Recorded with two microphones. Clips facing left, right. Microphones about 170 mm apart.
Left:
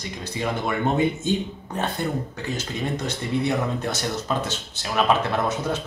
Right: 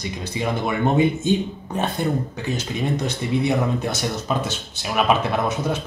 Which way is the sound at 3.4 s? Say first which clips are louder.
Right 3 dB; 15° right (ahead or behind).